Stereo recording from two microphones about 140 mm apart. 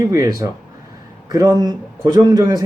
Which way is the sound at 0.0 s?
25° right (ahead or behind).